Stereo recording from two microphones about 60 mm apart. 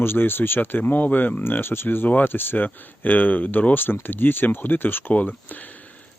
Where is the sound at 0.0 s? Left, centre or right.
Left.